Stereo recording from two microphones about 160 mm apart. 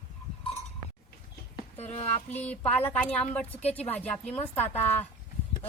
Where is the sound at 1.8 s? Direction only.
45° left (ahead or behind).